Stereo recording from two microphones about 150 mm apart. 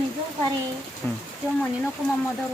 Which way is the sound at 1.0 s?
10° left (ahead or behind).